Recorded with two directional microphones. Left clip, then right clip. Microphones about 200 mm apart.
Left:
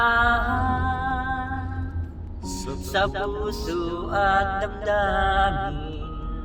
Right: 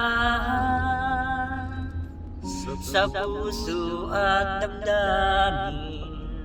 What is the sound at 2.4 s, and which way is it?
Speech, 35° left (ahead or behind).